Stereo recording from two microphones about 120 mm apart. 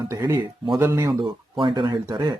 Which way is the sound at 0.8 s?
25° right (ahead or behind).